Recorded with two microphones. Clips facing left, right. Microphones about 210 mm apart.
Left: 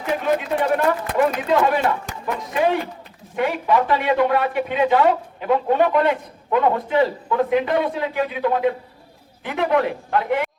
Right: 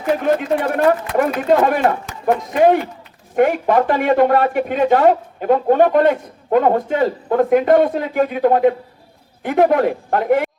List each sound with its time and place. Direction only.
0.3 s speech: 45° right (ahead or behind)